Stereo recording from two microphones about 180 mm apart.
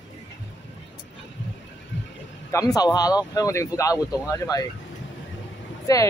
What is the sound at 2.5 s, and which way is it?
Speech, 20° left (ahead or behind).